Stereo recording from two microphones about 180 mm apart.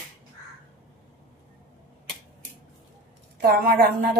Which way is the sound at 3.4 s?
55° right (ahead or behind).